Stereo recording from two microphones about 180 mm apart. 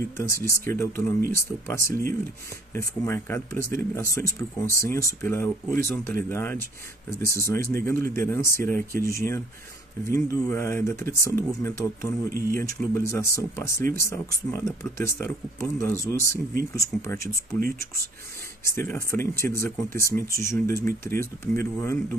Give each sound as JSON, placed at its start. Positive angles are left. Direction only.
{"t": 0.2, "sound": "speech", "side_deg": 15}
{"t": 18.6, "sound": "speech", "side_deg": 15}